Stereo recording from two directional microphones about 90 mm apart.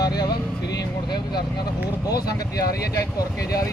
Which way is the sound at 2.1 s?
45° left (ahead or behind).